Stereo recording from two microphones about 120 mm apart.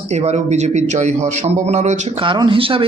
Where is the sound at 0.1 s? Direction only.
70° right (ahead or behind).